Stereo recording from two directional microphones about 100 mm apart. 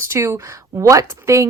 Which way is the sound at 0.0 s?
25° right (ahead or behind).